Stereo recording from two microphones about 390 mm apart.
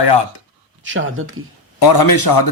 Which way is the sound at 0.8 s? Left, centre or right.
Right.